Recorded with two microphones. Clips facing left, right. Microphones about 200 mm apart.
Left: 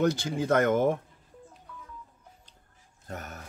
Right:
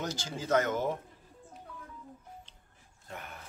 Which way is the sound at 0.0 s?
60° left (ahead or behind).